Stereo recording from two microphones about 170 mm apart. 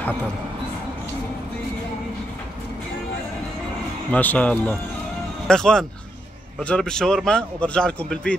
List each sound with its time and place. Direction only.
4.1 s speech: 10° left (ahead or behind)